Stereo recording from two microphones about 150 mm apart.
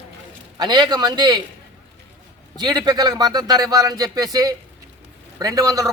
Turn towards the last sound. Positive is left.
turn(degrees=-25)  # may be behind; listen again after turning